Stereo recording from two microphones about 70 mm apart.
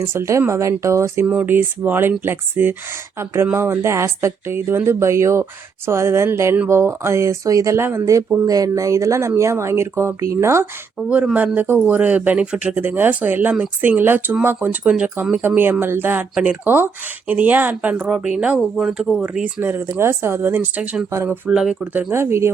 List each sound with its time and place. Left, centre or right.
0.0 s speech: right
1.3 s speech: right
7.8 s speech: right
8.4 s speech: right
11.3 s speech: right
11.6 s speech: right
11.9 s speech: right
14.8 s speech: centre
19.6 s speech: right
21.5 s speech: centre
21.9 s speech: right